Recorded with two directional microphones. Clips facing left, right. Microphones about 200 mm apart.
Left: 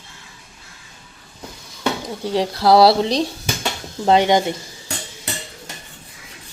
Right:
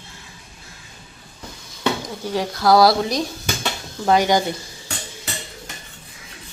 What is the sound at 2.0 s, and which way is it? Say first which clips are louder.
Speech: left 3 dB; 30° left (ahead or behind).